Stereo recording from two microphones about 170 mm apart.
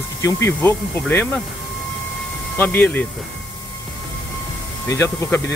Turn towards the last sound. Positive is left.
turn(degrees=15)  # may be behind; listen again after turning